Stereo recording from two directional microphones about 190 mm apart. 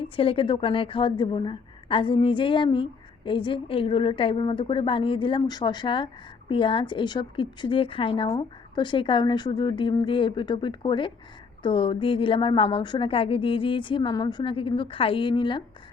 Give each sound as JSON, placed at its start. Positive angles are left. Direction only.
{"t": 0.2, "sound": "a woman's voice", "side_deg": 25}